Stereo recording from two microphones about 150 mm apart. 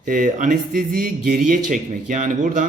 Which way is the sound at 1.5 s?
60° right (ahead or behind).